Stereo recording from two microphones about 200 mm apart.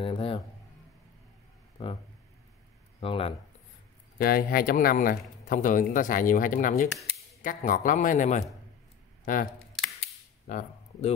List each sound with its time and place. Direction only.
0.0 s speech: 25° left (ahead or behind)
3.0 s speech: 30° left (ahead or behind)
4.2 s a man's voice: 45° left (ahead or behind)
9.5 s camera: centre (ahead or behind)
10.4 s speech: 40° left (ahead or behind)